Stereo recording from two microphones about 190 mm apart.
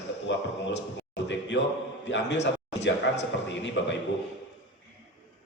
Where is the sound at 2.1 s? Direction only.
65° left (ahead or behind).